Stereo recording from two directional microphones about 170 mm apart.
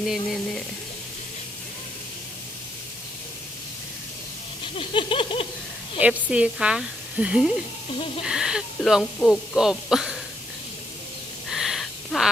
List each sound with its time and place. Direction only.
0.0 s speech: centre (ahead or behind)
4.8 s baby laughter: 30° left (ahead or behind)
6.0 s speech: 5° right (ahead or behind)
11.5 s a sound: centre (ahead or behind)